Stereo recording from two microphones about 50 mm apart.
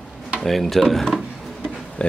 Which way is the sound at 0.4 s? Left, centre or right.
Centre.